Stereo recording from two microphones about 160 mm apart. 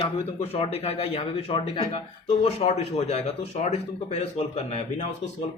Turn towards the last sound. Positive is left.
turn(degrees=40)  # may be behind; listen again after turning